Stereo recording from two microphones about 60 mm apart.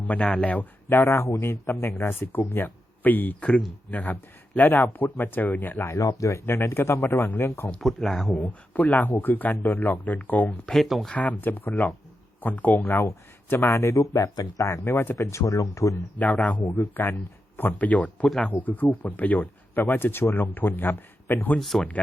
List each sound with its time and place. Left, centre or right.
0.0 s speech: left
0.9 s a man's voice: left
5.8 s speech: left
6.4 s a man's voice: left
7.8 s speech: centre
8.4 s speech: left
13.5 s a man's voice: left
13.9 s speech: left
15.2 s speech: left
16.1 s speech: left
16.6 s speech: left
21.6 s speech: centre